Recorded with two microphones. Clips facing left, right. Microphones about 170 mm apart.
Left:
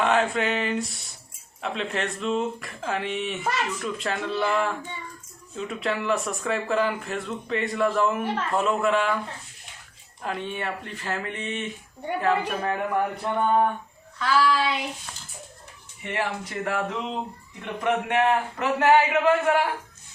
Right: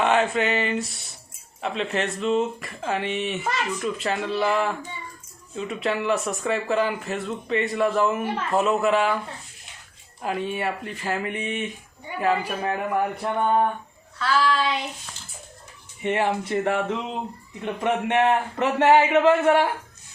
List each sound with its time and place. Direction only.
0.0 s a sound: centre (ahead or behind)
1.6 s speech: centre (ahead or behind)
10.2 s speech: 5° right (ahead or behind)
14.2 s child singing: 10° left (ahead or behind)
16.0 s a man's voice: 25° right (ahead or behind)
17.8 s a man's voice: 25° right (ahead or behind)